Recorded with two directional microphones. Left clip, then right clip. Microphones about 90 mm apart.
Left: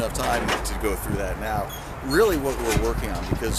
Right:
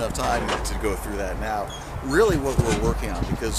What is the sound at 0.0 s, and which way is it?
Speech, centre (ahead or behind).